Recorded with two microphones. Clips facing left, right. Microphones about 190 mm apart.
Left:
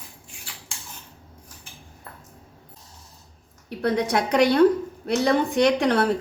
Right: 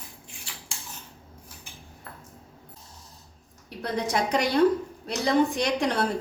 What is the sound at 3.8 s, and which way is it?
A woman's voice, 60° left (ahead or behind).